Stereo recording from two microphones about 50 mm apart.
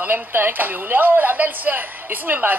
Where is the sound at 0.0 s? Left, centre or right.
Right.